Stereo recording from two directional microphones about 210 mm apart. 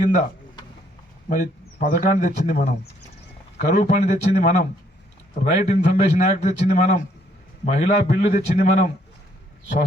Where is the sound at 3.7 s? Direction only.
35° left (ahead or behind).